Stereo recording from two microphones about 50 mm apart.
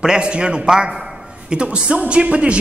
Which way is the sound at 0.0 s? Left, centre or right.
Centre.